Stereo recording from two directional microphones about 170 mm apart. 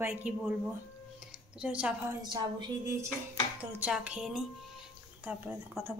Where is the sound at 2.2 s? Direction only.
25° right (ahead or behind).